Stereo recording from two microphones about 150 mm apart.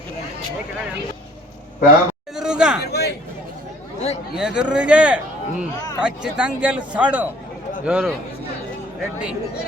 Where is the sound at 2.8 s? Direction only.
90° left.